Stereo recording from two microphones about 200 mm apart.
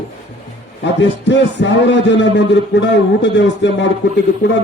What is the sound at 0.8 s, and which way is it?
A man's voice, 60° left (ahead or behind).